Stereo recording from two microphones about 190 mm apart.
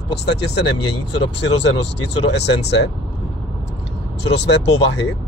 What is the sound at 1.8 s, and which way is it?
Speech, 65° left (ahead or behind).